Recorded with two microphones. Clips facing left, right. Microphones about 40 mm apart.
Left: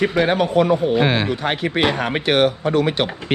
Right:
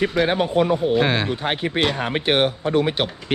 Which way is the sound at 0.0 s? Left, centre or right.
Centre.